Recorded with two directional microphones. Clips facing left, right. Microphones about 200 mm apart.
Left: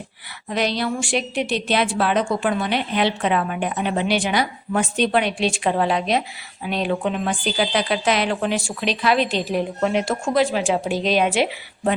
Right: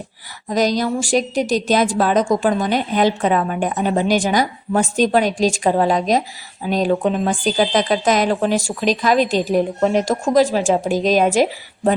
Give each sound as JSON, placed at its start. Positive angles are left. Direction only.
{"t": 0.4, "sound": "a woman's voice", "side_deg": -40}